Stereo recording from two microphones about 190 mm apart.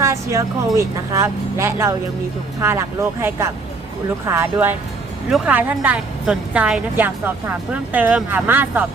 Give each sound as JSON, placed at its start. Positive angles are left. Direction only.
{"t": 0.0, "sound": "a woman's voice", "side_deg": -15}